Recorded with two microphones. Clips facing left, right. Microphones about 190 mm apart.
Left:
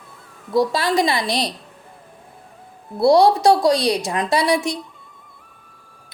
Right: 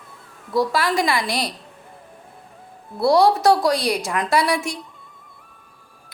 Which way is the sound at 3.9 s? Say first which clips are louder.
Left 2 dB; 15° left (ahead or behind).